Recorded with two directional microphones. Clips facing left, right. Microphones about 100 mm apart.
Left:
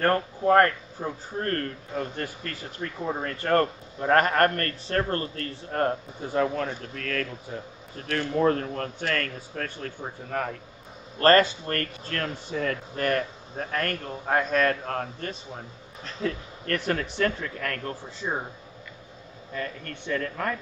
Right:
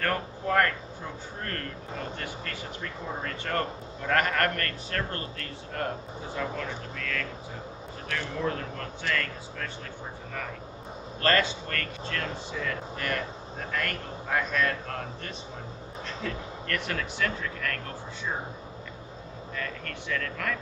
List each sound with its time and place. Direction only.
0.0 s speech: 35° left (ahead or behind)
19.5 s speech: 30° left (ahead or behind)